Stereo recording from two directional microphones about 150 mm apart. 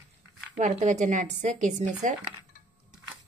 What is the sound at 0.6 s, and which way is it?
Speech, 55° right (ahead or behind).